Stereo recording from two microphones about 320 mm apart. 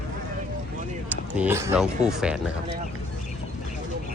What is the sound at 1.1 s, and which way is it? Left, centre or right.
Speech, centre.